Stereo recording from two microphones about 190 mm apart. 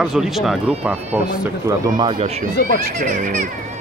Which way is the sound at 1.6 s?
20° right (ahead or behind).